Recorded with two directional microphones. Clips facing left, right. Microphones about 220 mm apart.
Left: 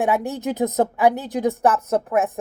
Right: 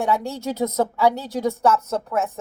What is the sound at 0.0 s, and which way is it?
A woman's voice, 15° left (ahead or behind).